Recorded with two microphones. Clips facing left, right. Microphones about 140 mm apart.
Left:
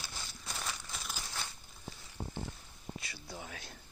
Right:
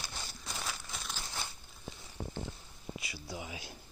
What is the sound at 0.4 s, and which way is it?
Crumpling, centre (ahead or behind).